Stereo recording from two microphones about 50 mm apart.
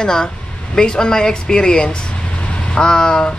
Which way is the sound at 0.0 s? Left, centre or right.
Centre.